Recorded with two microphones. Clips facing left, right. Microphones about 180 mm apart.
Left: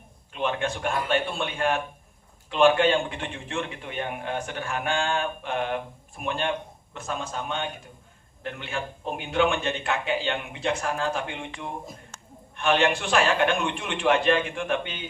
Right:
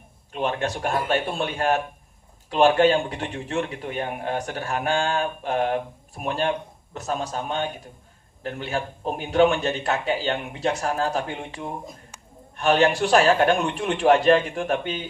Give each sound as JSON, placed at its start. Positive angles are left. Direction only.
{"t": 0.3, "sound": "a man's voice", "side_deg": -40}